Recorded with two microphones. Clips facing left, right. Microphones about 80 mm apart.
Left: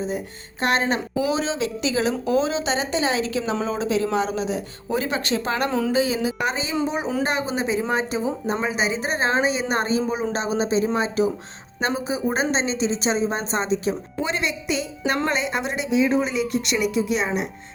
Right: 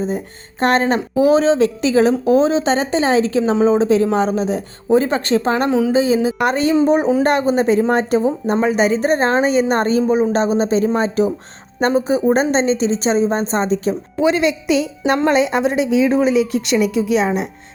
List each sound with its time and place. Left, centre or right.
0.6 s a woman's voice: right
6.4 s a woman's voice: right
14.2 s a woman's voice: right
16.1 s a woman's voice: centre